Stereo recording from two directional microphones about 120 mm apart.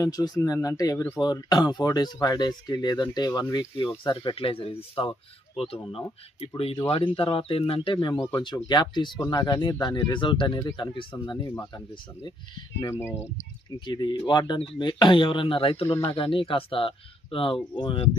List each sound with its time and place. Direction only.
0.0 s speech: 30° left (ahead or behind); by 8.1 s 50° left (ahead or behind)
8.4 s speech: 30° left (ahead or behind)
12.8 s speech: 25° left (ahead or behind)
13.7 s speech: 40° left (ahead or behind)
15.9 s speech: 20° left (ahead or behind)
16.1 s speech: 50° left (ahead or behind)